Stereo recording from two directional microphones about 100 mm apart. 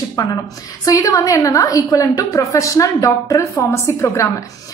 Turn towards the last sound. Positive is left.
turn(degrees=30)  # may be behind; listen again after turning